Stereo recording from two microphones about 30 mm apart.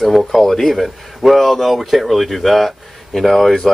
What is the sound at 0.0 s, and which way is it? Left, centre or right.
Speech, centre.